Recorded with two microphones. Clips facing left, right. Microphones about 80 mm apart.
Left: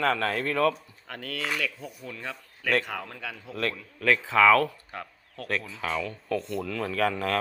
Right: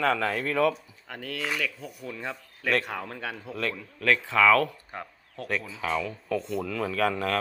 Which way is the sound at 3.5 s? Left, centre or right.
Centre.